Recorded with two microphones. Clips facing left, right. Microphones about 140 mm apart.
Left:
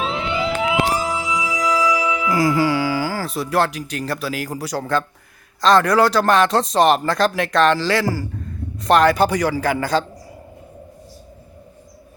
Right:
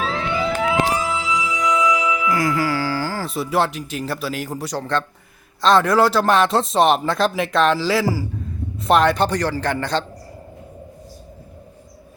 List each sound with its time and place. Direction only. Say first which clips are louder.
0.0 s music: even; 15° left (ahead or behind)
1.5 s music: even; 35° left (ahead or behind); by 5.0 s 5° left (ahead or behind)
5.6 s speech: left 1 dB; centre (ahead or behind)